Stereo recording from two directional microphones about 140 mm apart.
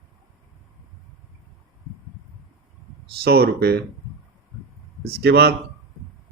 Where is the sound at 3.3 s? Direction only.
90° right.